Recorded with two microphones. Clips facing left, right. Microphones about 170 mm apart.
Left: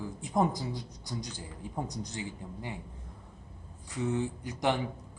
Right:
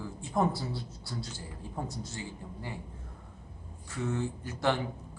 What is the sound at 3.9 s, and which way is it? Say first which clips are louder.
Speech: left 2 dB; 15° left (ahead or behind).